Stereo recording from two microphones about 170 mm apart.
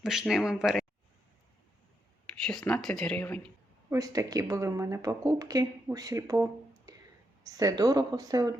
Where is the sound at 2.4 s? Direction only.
5° left (ahead or behind).